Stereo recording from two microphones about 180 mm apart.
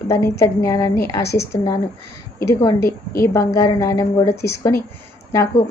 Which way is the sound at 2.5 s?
15° left (ahead or behind).